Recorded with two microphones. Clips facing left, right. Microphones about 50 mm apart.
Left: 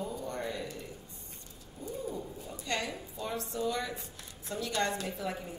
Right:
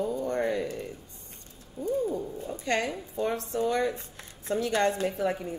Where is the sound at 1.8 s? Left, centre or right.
Right.